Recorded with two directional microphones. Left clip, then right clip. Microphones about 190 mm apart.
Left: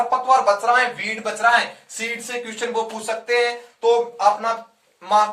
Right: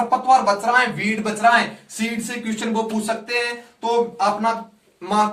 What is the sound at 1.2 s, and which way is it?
Speech, 15° left (ahead or behind).